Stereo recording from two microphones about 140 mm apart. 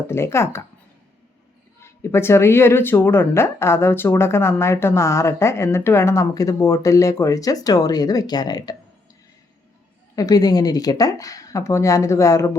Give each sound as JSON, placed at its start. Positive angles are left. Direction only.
{"t": 0.1, "sound": "speech", "side_deg": 20}
{"t": 1.8, "sound": "speech", "side_deg": 20}
{"t": 10.2, "sound": "speech", "side_deg": 25}